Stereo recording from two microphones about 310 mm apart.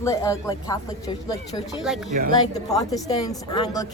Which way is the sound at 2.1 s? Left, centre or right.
Right.